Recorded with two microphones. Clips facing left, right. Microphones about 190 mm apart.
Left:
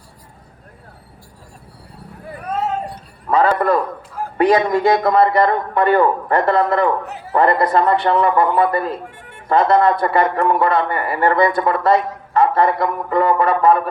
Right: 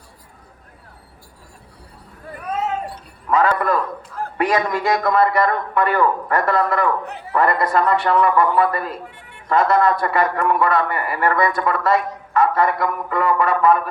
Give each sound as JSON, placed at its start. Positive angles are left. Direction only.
{"t": 3.2, "sound": "a sound", "side_deg": 30}
{"t": 4.4, "sound": "a man's voice", "side_deg": 30}
{"t": 7.0, "sound": "a sound", "side_deg": 5}
{"t": 7.3, "sound": "a man's voice", "side_deg": 25}
{"t": 9.0, "sound": "music", "side_deg": 45}
{"t": 9.5, "sound": "a man's voice", "side_deg": 25}